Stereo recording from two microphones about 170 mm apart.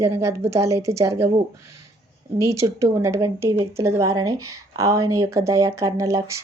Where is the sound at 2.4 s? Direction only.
15° right (ahead or behind).